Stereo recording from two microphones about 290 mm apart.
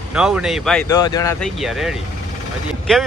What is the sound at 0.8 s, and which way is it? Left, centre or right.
Speech, centre.